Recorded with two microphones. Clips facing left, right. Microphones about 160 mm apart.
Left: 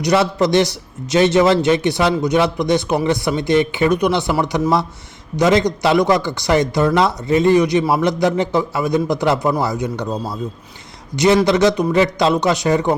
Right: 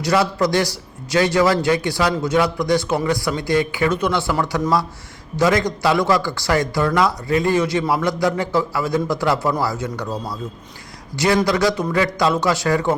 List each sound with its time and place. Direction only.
0.0 s speech: 20° left (ahead or behind)
11.4 s speech: 20° left (ahead or behind)